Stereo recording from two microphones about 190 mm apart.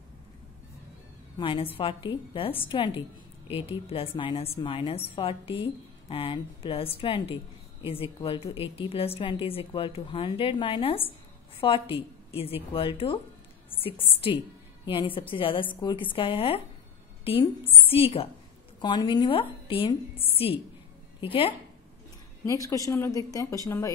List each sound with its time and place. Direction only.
1.4 s a woman's voice: 25° left (ahead or behind)
17.2 s a sound: 30° left (ahead or behind)
17.8 s a woman's voice: 30° left (ahead or behind)
22.5 s speech: 15° left (ahead or behind)